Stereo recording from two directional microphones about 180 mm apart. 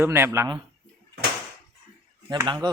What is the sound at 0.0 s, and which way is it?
Speech, 15° right (ahead or behind).